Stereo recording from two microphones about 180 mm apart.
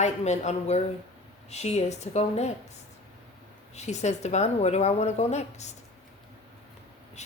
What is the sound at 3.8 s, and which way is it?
A woman's voice, 40° left (ahead or behind).